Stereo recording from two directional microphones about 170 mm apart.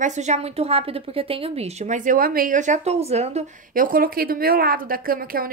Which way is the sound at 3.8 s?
55° right (ahead or behind).